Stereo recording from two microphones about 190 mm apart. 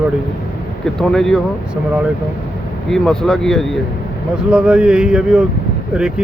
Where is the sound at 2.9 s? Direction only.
5° left (ahead or behind).